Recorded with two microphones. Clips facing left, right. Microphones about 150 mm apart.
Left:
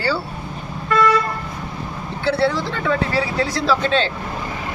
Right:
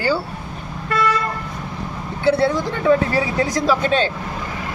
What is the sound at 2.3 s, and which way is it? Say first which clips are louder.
Speech: right 2 dB; 15° right (ahead or behind).